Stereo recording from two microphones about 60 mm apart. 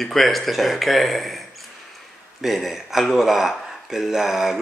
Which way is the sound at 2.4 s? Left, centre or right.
Centre.